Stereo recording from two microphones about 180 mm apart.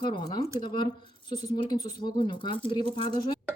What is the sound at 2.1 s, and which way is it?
A woman's voice, 25° left (ahead or behind).